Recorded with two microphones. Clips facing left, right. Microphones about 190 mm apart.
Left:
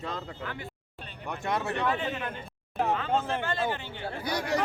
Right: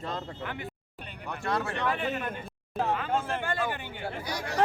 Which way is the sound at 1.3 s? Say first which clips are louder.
Even; 20° left (ahead or behind).